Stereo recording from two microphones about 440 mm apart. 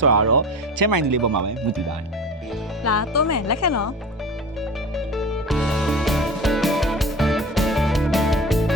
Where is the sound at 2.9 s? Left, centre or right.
Left.